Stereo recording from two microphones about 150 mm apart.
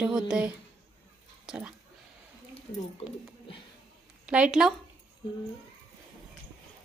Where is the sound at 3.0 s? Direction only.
40° left (ahead or behind).